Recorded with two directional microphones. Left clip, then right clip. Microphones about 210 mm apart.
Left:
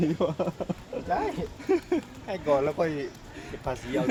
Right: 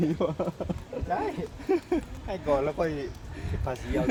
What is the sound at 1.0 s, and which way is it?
Speech, 15° left (ahead or behind).